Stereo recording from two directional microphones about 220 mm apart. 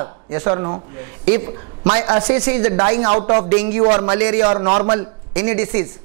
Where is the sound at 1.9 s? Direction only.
20° right (ahead or behind).